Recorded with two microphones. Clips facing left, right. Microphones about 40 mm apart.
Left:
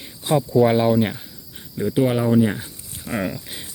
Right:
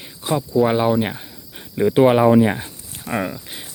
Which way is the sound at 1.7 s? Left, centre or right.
Right.